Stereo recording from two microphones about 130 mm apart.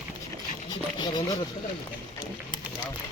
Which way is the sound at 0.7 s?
35° left (ahead or behind).